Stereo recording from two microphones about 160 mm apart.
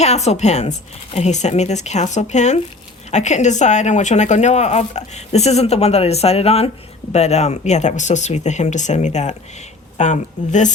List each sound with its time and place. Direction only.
0.0 s speech: 45° left (ahead or behind)